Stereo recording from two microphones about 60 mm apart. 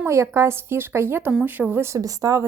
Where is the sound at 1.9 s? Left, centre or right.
Right.